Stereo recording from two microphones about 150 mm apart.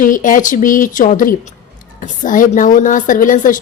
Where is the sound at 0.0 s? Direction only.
65° left (ahead or behind).